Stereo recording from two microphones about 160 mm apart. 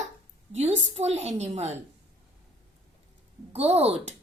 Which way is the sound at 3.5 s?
40° right (ahead or behind).